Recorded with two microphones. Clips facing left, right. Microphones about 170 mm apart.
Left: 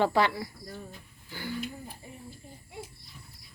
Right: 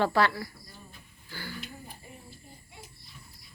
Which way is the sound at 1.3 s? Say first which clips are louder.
Left 4 dB; 20° left (ahead or behind).